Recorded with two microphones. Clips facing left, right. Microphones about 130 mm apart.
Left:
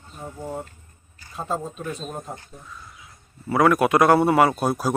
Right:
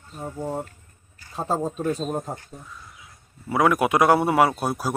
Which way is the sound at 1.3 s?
35° right (ahead or behind).